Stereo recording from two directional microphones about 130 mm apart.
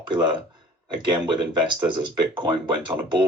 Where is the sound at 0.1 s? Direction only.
35° right (ahead or behind).